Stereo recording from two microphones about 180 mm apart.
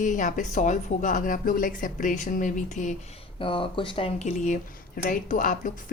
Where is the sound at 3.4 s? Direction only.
30° left (ahead or behind); by 5.7 s 50° left (ahead or behind).